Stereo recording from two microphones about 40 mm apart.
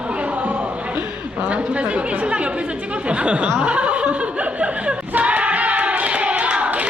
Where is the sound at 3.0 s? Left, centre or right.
Right.